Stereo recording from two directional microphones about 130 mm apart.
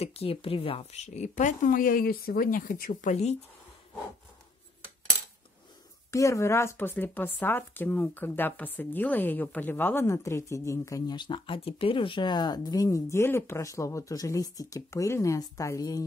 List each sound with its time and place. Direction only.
0.0 s speech: 50° left (ahead or behind)
6.1 s speech: 25° left (ahead or behind)